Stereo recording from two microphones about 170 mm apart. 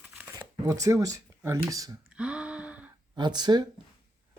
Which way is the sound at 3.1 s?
25° right (ahead or behind).